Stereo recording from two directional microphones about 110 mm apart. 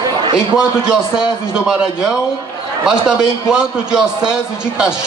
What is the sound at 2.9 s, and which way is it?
A man's voice, 5° right (ahead or behind).